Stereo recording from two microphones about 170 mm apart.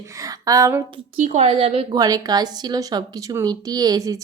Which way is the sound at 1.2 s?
45° right (ahead or behind).